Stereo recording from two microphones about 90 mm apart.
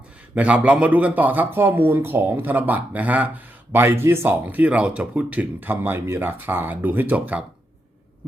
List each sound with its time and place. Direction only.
0.3 s speech: 15° right (ahead or behind)